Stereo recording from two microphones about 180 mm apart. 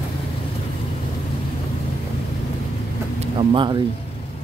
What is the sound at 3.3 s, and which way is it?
Speech, 25° right (ahead or behind).